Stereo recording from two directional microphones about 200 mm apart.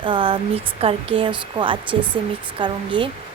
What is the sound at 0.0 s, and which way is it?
A woman's voice, 25° right (ahead or behind).